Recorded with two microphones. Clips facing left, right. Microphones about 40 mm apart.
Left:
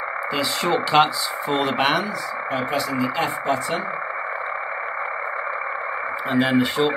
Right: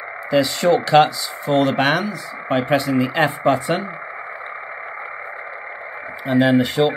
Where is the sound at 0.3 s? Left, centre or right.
Centre.